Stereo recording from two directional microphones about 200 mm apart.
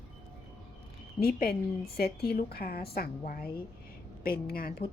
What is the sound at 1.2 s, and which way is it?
A woman's voice, 50° left (ahead or behind).